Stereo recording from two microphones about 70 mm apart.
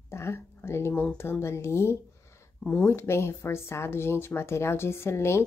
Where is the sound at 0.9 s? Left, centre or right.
Centre.